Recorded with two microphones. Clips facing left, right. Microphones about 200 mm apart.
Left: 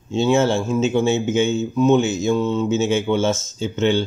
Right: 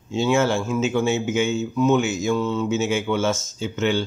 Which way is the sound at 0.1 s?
25° left (ahead or behind).